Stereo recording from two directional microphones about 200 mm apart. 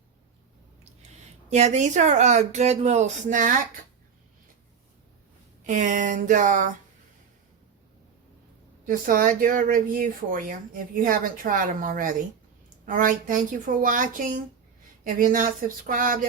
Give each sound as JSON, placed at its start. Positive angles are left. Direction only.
{"t": 1.5, "sound": "speech", "side_deg": -35}
{"t": 5.6, "sound": "speech", "side_deg": -40}
{"t": 8.9, "sound": "speech", "side_deg": -45}